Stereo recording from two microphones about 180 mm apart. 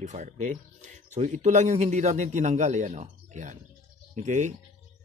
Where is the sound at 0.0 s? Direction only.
40° right (ahead or behind).